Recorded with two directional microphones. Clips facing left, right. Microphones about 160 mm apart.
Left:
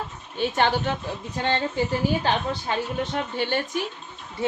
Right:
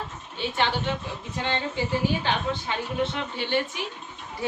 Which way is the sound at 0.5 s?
45° left (ahead or behind).